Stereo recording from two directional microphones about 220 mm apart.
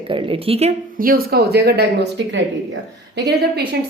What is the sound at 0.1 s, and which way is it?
Speech, 25° right (ahead or behind).